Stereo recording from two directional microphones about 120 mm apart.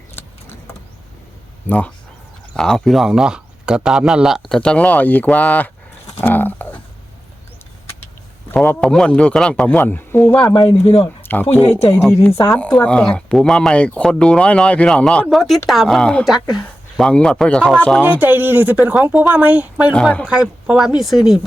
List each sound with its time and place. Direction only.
2.6 s speech: 5° left (ahead or behind)
6.2 s a sound: 15° left (ahead or behind)
8.4 s a man's voice: 15° left (ahead or behind)
10.4 s speech: 40° left (ahead or behind)
10.8 s speech: 55° left (ahead or behind)
11.2 s a sound: 15° left (ahead or behind)
11.6 s speech: 60° left (ahead or behind)
12.5 s speech: 10° left (ahead or behind)
18.0 s speech: 15° right (ahead or behind)